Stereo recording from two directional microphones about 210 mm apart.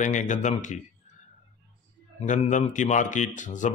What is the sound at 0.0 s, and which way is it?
Speech, 35° left (ahead or behind).